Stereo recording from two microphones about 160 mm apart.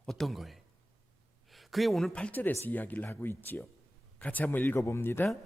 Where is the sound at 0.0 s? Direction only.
Centre (ahead or behind).